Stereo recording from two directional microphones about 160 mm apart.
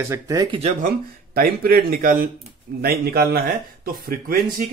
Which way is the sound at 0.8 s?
70° right (ahead or behind).